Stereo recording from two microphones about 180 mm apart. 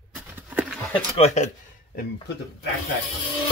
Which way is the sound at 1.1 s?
40° left (ahead or behind).